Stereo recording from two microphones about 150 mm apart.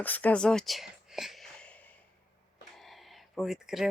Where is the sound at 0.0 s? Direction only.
10° left (ahead or behind).